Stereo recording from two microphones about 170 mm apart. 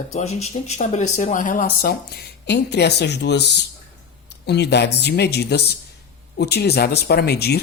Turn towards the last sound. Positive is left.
turn(degrees=70)  # may be behind; listen again after turning